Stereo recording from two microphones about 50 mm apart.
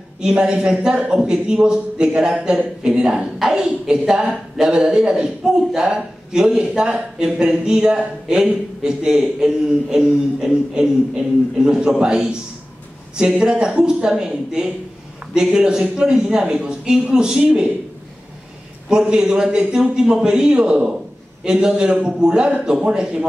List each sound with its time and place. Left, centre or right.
0.2 s a woman's voice: centre
18.9 s a woman's voice: centre